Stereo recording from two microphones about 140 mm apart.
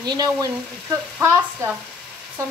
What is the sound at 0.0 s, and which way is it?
Speech, 30° right (ahead or behind).